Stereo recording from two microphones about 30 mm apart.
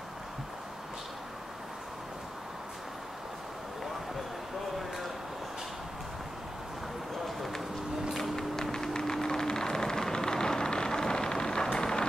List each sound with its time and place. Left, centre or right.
7.2 s a sound: centre
8.2 s run: centre
8.7 s vehicle: centre